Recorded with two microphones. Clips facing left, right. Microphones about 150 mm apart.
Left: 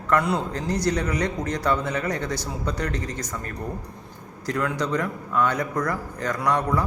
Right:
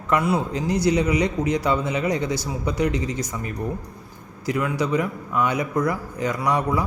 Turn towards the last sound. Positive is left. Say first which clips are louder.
# right 1 dB
turn(degrees=-10)  # may be behind; listen again after turning